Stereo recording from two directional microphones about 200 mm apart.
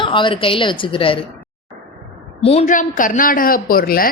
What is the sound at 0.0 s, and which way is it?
A woman's voice, 25° left (ahead or behind).